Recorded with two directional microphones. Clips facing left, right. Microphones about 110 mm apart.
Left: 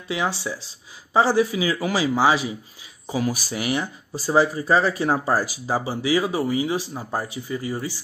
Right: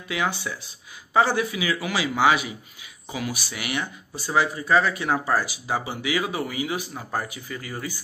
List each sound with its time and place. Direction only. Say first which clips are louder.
0.1 s speech: left 2 dB; 30° left (ahead or behind)